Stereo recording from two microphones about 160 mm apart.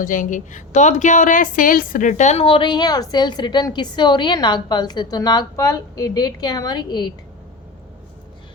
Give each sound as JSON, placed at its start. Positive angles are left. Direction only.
{"t": 0.0, "sound": "a woman's voice", "side_deg": 55}